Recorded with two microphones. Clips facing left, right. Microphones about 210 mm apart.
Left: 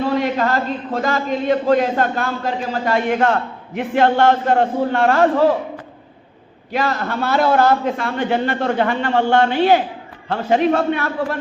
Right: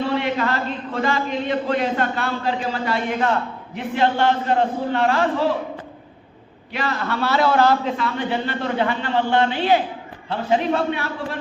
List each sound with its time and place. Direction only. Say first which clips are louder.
0.2 s a man's voice: left 4 dB; 40° left (ahead or behind)
6.7 s a man's voice: left 3 dB; 45° left (ahead or behind)